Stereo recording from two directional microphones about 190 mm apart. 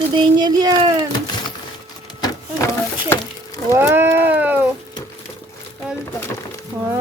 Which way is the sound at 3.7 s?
10° right (ahead or behind).